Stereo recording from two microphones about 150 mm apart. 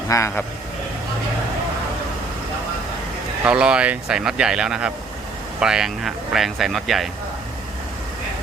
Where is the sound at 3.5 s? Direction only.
5° right (ahead or behind).